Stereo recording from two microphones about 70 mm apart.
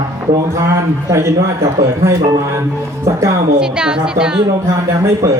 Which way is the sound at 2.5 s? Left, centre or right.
Right.